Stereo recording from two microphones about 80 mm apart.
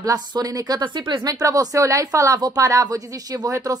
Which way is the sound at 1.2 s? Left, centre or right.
Right.